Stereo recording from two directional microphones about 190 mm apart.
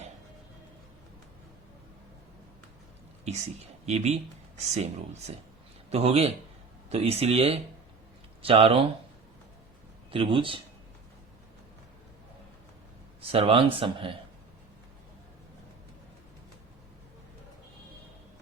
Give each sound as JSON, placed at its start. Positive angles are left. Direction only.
{"t": 3.8, "sound": "speech", "side_deg": -35}
{"t": 10.1, "sound": "speech", "side_deg": -25}
{"t": 13.3, "sound": "speech", "side_deg": -30}